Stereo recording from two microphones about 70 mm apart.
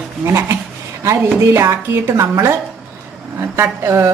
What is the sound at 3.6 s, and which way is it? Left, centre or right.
Speech, right.